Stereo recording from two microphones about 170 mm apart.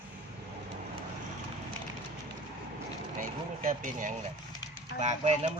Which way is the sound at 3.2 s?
50° right (ahead or behind).